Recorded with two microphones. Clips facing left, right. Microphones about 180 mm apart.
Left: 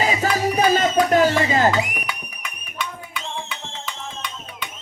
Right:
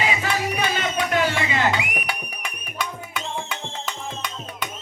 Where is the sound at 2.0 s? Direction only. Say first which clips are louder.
Right 2 dB; 35° right (ahead or behind).